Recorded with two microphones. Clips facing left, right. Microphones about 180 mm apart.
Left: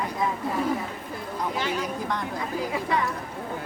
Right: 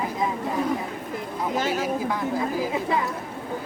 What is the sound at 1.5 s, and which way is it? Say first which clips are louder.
Speech: right 5 dB; 45° right (ahead or behind).